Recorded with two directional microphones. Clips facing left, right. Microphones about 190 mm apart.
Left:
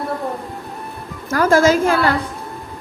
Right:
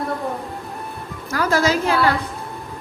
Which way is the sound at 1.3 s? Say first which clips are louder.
Left 5 dB; 50° left (ahead or behind).